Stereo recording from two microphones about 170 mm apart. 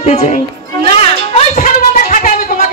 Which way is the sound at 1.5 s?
55° left (ahead or behind).